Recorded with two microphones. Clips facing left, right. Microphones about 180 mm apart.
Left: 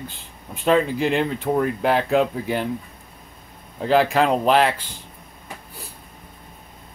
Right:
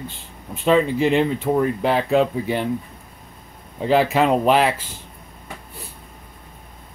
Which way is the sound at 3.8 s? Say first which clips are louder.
Right 1 dB; centre (ahead or behind).